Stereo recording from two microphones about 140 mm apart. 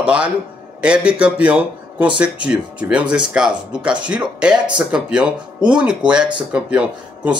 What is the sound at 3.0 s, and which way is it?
Speech, 35° right (ahead or behind).